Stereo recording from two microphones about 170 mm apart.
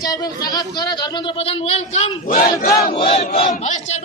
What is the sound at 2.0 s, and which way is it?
Speech, 55° left (ahead or behind).